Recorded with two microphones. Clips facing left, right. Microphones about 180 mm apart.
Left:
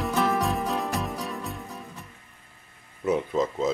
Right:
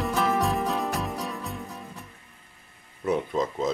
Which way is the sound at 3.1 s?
Centre (ahead or behind).